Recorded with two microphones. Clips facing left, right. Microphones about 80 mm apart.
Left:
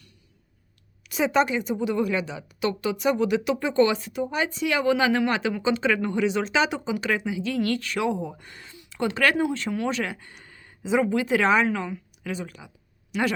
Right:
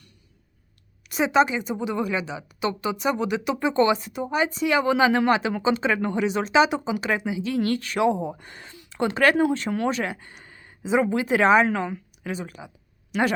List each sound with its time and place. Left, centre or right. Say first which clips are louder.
1.2 s speech: right 2 dB; centre
4.8 s speech: right 1 dB; right
9.6 s a woman's voice: right 2 dB; right
9.9 s speech: right 1 dB; right
11.6 s a woman's voice: right 2 dB; right
12.2 s speech: right 1 dB; centre